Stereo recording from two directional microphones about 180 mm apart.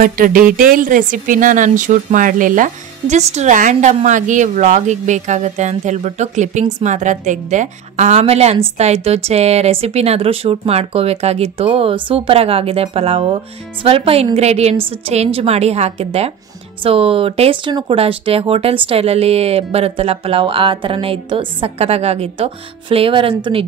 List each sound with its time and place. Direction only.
0.0 s speech: 50° right (ahead or behind); by 23.3 s 30° right (ahead or behind)